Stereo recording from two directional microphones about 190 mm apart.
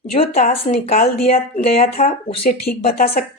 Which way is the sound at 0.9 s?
45° left (ahead or behind).